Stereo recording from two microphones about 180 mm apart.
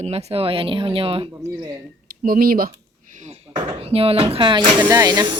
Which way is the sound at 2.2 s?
55° right (ahead or behind).